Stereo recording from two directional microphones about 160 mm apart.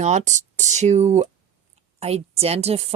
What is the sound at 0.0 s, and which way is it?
A woman's voice, 45° right (ahead or behind).